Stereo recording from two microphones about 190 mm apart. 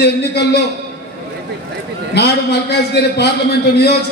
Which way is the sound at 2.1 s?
60° left (ahead or behind).